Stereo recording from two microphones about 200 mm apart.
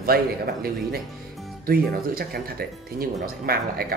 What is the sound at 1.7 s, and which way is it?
Speech, 50° right (ahead or behind).